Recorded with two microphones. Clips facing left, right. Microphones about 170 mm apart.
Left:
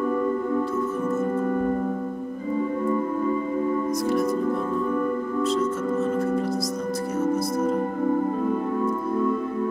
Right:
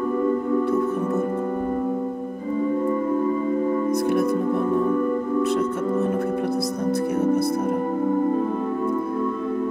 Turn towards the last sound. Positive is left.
turn(degrees=-60)  # may be behind; listen again after turning